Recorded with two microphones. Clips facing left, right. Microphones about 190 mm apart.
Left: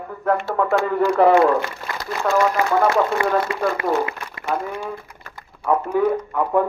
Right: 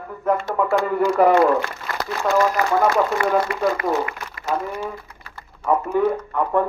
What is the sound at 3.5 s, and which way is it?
Speech, 25° left (ahead or behind).